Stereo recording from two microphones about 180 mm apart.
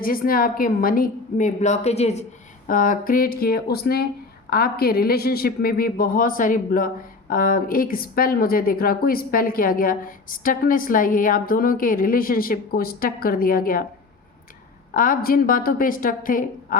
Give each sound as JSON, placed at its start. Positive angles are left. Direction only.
{"t": 0.0, "sound": "speech", "side_deg": 55}
{"t": 2.6, "sound": "speech", "side_deg": 50}
{"t": 14.9, "sound": "speech", "side_deg": 50}